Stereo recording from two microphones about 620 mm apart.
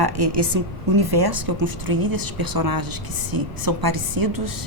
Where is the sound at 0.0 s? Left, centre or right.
Right.